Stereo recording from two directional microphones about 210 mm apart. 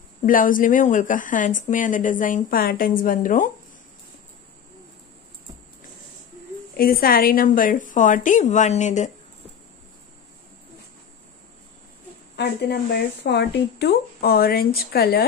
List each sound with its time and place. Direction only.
0.3 s speech: 40° left (ahead or behind)
6.8 s speech: 45° left (ahead or behind)
12.4 s speech: 50° left (ahead or behind)